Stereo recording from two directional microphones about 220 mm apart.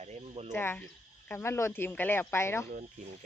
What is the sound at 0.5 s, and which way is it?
Speech, 10° left (ahead or behind).